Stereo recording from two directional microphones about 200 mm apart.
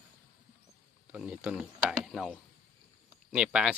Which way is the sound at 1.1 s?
5° right (ahead or behind).